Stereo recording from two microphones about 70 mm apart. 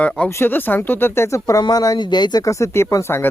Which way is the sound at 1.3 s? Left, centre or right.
Left.